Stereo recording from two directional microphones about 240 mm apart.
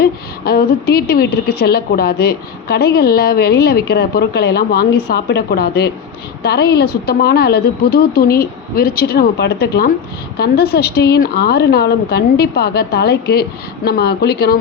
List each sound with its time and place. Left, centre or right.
0.0 s a woman's voice: left